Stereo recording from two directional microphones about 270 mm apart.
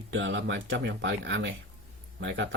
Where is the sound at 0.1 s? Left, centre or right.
Right.